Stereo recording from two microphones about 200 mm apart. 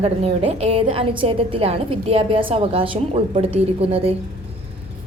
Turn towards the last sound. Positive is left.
turn(degrees=-30)  # may be behind; listen again after turning